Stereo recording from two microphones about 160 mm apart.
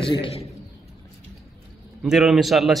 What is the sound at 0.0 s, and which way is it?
Speech, 30° left (ahead or behind).